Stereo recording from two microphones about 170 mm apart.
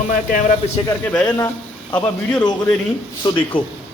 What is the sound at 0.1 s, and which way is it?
Speech, 50° left (ahead or behind).